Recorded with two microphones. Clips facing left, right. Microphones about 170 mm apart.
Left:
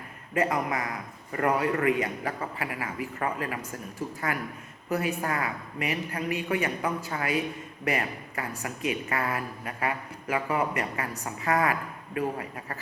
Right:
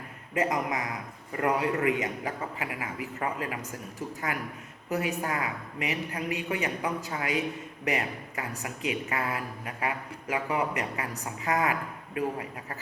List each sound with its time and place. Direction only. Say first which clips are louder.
0.3 s a woman's voice: left 1 dB; 15° right (ahead or behind)